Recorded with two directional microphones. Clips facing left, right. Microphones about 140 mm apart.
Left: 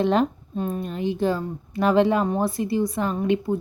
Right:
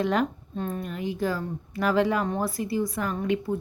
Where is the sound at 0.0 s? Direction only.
25° left (ahead or behind).